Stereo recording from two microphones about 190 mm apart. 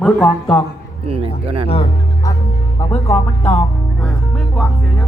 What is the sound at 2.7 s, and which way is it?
Speech, 15° left (ahead or behind).